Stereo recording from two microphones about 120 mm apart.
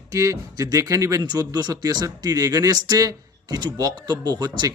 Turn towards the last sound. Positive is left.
turn(degrees=-35)  # may be behind; listen again after turning